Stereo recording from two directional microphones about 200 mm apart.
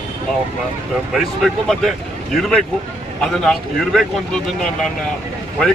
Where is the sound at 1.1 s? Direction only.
Centre (ahead or behind).